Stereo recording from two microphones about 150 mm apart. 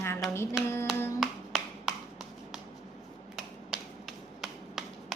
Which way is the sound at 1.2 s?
5° right (ahead or behind).